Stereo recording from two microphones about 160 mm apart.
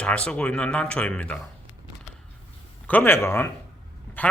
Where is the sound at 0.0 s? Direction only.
5° left (ahead or behind).